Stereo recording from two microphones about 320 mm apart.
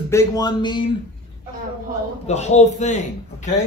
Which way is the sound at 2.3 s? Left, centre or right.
Left.